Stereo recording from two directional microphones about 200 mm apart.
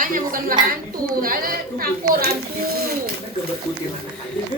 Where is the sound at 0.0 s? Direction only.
45° right (ahead or behind).